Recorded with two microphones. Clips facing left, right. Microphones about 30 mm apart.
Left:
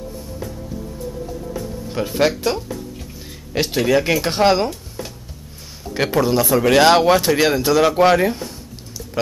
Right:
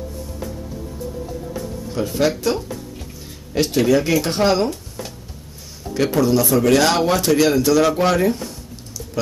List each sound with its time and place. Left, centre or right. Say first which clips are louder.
2.0 s speech: left 1 dB; left
3.5 s speech: right 1 dB; centre
6.1 s speech: left 1 dB; left